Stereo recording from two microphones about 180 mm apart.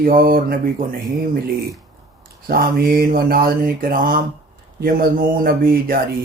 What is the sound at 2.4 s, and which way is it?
Mantra, 55° right (ahead or behind).